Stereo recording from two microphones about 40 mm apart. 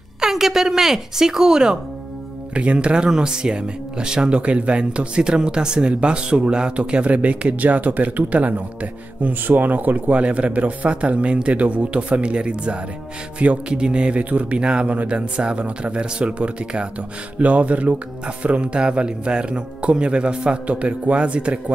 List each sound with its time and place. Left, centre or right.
0.2 s speech: centre
2.5 s speech: right
9.2 s speech: right